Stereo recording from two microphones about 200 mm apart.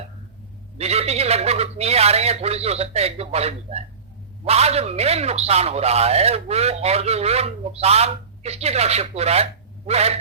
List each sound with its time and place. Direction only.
0.8 s a man's voice: 30° right (ahead or behind)